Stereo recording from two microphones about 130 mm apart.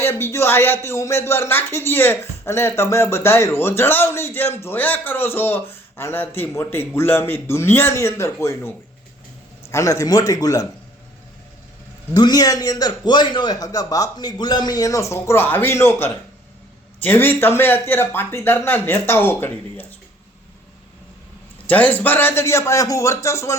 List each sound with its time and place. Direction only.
0.0 s speech: 20° left (ahead or behind)
9.7 s speech: 25° left (ahead or behind)
12.1 s speech: 30° left (ahead or behind)
21.7 s speech: 10° left (ahead or behind)